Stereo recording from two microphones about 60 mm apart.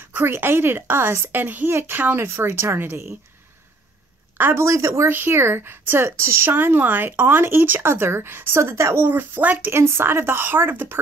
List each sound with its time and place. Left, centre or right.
0.1 s speech: right
4.4 s speech: right
4.6 s speech: right
5.1 s speech: right
9.7 s speech: right